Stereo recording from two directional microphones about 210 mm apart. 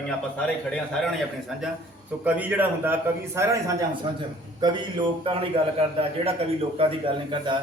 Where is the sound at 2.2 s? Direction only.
5° right (ahead or behind); by 5.5 s 25° right (ahead or behind).